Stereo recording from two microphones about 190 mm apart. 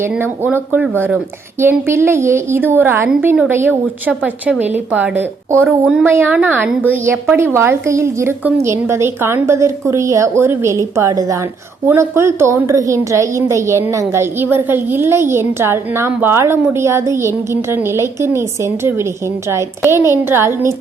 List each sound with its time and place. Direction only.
0.0 s a woman's voice: 10° right (ahead or behind)